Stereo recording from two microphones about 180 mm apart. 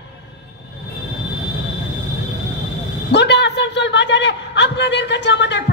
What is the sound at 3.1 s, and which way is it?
A man's voice, 75° left (ahead or behind).